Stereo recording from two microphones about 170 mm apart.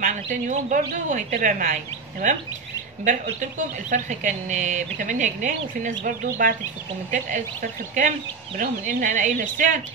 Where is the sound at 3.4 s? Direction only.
45° right (ahead or behind).